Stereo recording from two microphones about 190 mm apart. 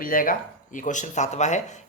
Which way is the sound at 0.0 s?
45° left (ahead or behind).